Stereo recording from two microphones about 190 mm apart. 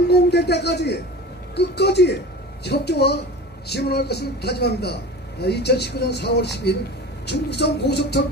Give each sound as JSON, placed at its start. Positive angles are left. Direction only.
{"t": 0.1, "sound": "speech", "side_deg": 60}